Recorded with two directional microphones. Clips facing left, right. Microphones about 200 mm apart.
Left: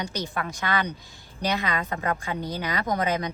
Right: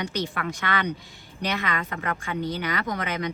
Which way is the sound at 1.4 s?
40° left (ahead or behind).